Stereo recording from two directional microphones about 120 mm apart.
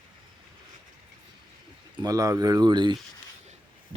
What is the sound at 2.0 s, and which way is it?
Speech, 30° right (ahead or behind).